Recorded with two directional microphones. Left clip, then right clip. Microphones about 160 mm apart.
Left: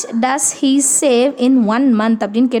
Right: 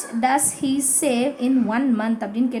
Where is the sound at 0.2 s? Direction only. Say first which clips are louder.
Left 3 dB; 45° left (ahead or behind).